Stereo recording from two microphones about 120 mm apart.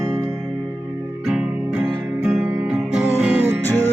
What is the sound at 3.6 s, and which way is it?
Music, 15° left (ahead or behind).